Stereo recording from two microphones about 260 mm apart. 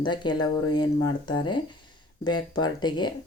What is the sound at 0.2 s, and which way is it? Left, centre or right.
Speech, centre.